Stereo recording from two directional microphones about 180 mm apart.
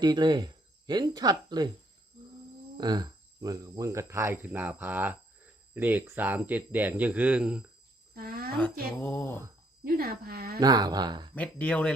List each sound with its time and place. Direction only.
0.0 s speech: 25° right (ahead or behind)
2.7 s speech: 20° right (ahead or behind); by 7.6 s 5° right (ahead or behind)
8.1 s a sound: 60° right (ahead or behind)
9.0 s speech: 10° left (ahead or behind)
9.8 s a woman's voice: 60° right (ahead or behind)
10.6 s speech: 20° right (ahead or behind)
11.3 s speech: 5° left (ahead or behind)